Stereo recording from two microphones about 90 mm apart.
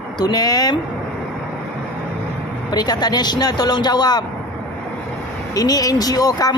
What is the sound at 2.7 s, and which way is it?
Speech, 50° left (ahead or behind).